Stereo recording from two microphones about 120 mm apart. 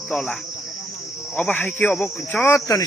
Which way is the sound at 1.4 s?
15° left (ahead or behind).